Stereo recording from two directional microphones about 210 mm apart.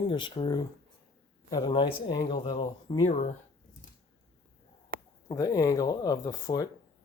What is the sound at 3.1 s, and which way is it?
Speech, 35° left (ahead or behind).